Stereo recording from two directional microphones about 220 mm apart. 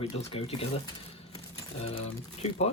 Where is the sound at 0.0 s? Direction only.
30° left (ahead or behind).